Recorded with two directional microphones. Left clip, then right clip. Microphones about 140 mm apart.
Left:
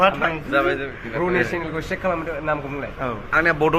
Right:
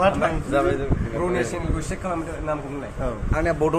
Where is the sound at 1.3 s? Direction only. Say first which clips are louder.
Left 4 dB; 50° left (ahead or behind).